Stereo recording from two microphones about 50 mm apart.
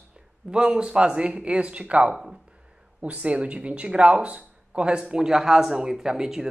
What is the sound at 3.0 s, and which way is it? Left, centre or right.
Speech, right.